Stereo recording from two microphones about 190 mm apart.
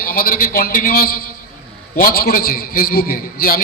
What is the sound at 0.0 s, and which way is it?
A man's voice, 50° left (ahead or behind).